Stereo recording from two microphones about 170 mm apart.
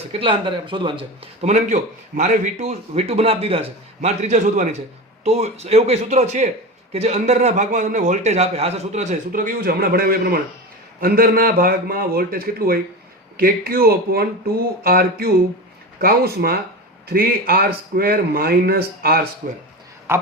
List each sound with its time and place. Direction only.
0.1 s a man's voice: 30° right (ahead or behind); by 19.2 s 65° right (ahead or behind)
19.4 s a man's voice: 45° right (ahead or behind)
20.1 s speech: 15° right (ahead or behind)